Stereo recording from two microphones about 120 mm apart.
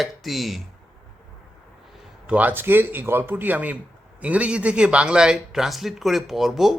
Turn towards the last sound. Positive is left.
turn(degrees=0)  # may be behind; listen again after turning